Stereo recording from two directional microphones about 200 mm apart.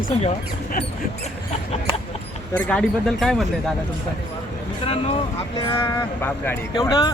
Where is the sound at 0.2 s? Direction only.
30° left (ahead or behind).